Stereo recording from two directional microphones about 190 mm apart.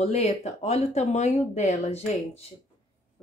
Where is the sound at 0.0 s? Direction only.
35° left (ahead or behind).